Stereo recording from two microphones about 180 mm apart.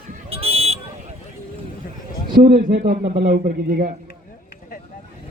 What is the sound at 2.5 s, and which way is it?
A man's voice, 65° right (ahead or behind).